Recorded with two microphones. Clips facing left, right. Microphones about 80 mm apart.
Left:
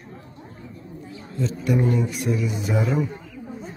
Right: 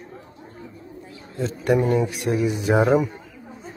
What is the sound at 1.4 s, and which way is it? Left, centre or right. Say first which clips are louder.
Speech: right 3 dB; right.